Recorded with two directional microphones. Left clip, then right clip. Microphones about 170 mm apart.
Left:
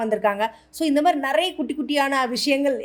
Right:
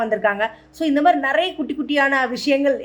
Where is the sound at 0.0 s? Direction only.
40° left (ahead or behind).